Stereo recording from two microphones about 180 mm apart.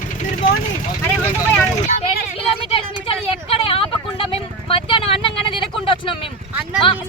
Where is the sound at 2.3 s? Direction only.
30° left (ahead or behind).